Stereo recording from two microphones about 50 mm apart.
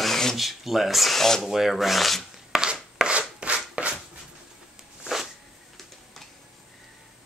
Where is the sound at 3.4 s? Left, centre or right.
Right.